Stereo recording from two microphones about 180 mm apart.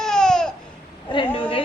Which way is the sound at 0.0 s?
5° left (ahead or behind).